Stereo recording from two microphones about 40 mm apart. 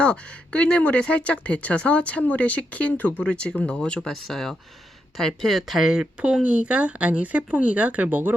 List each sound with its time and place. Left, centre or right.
0.0 s speech: left
3.2 s speech: left
4.1 s speech: centre
5.8 s speech: centre
6.4 s speech: right